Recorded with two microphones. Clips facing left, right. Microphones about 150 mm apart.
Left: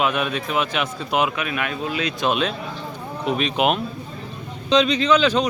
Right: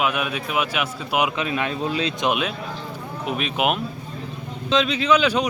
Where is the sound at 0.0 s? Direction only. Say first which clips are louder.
Left 2 dB; 5° right (ahead or behind).